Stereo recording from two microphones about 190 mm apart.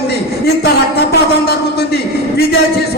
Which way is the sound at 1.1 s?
60° left (ahead or behind).